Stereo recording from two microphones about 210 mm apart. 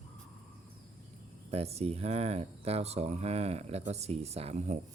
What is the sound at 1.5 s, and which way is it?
Speech, 30° right (ahead or behind).